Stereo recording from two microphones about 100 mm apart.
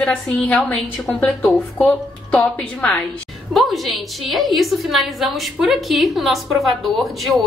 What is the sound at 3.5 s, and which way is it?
A woman's voice, centre (ahead or behind).